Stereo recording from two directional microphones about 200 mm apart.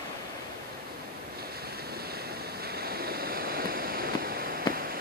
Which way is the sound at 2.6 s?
50° right (ahead or behind).